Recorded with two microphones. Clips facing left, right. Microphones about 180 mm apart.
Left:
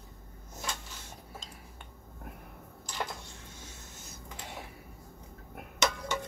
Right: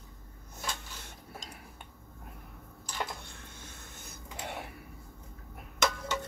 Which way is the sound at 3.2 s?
60° right (ahead or behind).